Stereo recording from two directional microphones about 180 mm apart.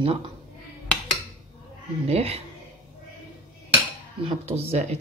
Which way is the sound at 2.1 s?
35° right (ahead or behind).